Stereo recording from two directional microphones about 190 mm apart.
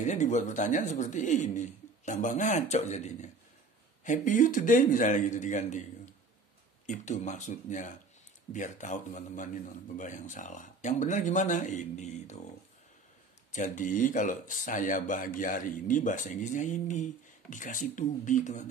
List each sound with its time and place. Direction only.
0.0 s speech: 40° left (ahead or behind)
6.9 s speech: 40° left (ahead or behind)
13.5 s speech: 40° left (ahead or behind)